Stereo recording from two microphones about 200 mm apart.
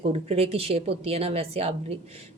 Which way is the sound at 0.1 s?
30° right (ahead or behind).